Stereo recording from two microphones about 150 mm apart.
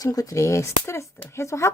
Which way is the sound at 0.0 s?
25° left (ahead or behind).